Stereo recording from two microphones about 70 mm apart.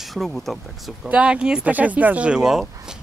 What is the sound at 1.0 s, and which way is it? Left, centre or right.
Speech, centre.